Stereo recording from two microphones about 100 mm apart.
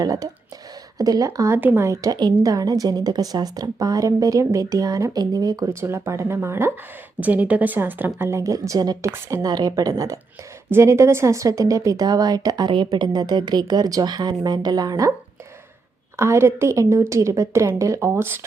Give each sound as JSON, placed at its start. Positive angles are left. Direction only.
{"t": 0.0, "sound": "speech", "side_deg": -35}
{"t": 1.5, "sound": "speech", "side_deg": -20}
{"t": 5.8, "sound": "a woman's voice", "side_deg": -30}
{"t": 16.1, "sound": "a woman's voice", "side_deg": -25}